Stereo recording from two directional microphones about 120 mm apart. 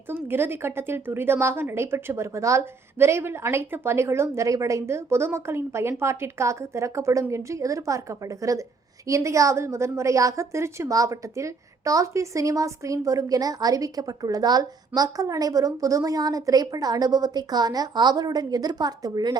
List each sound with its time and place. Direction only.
0.1 s a woman's voice: 20° right (ahead or behind); by 19.4 s 35° right (ahead or behind)